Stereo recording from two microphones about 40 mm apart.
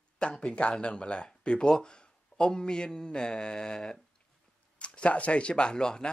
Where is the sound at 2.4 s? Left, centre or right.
Centre.